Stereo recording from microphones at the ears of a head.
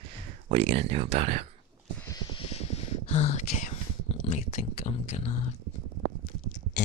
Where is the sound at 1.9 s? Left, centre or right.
Right.